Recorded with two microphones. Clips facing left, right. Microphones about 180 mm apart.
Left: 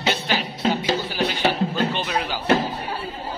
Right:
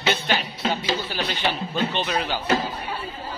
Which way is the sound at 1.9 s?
10° left (ahead or behind).